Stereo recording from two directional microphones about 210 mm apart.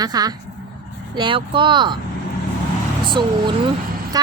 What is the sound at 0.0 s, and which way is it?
Speech, 20° right (ahead or behind).